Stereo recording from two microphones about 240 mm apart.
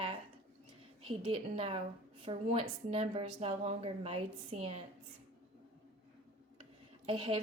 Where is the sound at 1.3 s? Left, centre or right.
Right.